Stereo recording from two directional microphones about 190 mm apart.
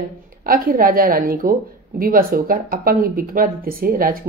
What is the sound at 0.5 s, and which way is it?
A woman's voice, 50° right (ahead or behind).